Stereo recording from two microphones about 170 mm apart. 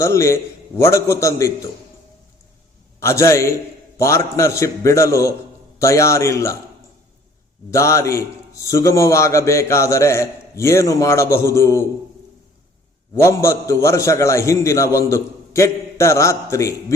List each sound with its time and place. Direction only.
0.0 s a man's voice: 15° left (ahead or behind)
3.0 s a man's voice: 15° left (ahead or behind)
7.7 s a man's voice: 15° left (ahead or behind)
13.1 s a man's voice: 15° left (ahead or behind)